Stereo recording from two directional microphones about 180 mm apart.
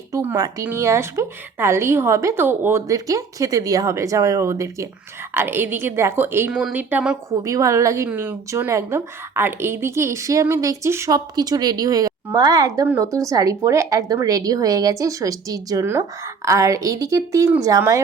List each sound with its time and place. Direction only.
0.1 s a woman's voice: 15° right (ahead or behind)
7.3 s a woman's voice: 15° right (ahead or behind)